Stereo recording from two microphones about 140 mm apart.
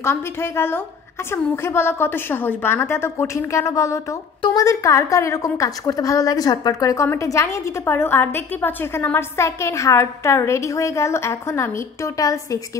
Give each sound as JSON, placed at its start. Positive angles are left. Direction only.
{"t": 0.0, "sound": "a woman's voice", "side_deg": 20}